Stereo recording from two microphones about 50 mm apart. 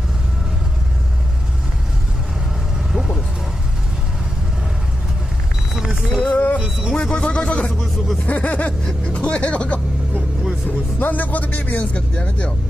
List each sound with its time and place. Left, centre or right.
5.8 s vehicle: centre
6.2 s music: left
6.9 s a sound: centre
8.8 s vehicle: left
11.0 s vehicle: left